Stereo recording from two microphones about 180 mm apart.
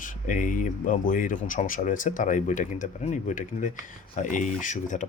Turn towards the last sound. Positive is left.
turn(degrees=45)  # may be behind; listen again after turning